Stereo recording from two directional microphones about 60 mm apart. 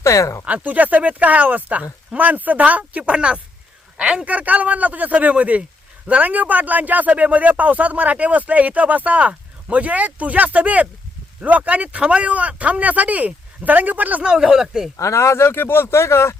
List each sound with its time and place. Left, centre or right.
0.0 s speech: left
0.4 s a man's voice: right
4.3 s speech: right
14.3 s speech: centre
14.9 s speech: left
15.4 s speech: left